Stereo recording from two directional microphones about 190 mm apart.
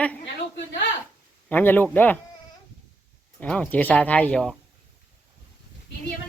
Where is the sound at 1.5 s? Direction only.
10° left (ahead or behind).